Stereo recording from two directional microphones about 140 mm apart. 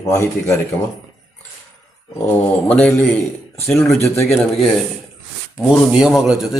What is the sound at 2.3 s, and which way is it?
Speech, 10° left (ahead or behind).